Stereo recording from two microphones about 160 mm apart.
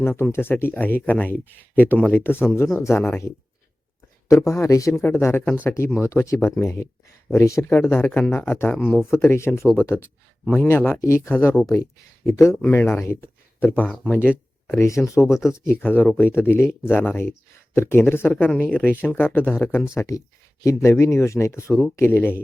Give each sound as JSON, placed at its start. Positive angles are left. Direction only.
{"t": 0.0, "sound": "speech", "side_deg": 15}
{"t": 8.8, "sound": "speech", "side_deg": 0}
{"t": 9.1, "sound": "speech", "side_deg": 15}